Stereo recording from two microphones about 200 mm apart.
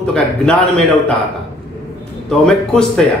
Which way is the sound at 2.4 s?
Centre (ahead or behind).